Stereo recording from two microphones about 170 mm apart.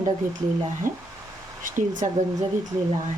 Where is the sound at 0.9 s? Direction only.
55° right (ahead or behind).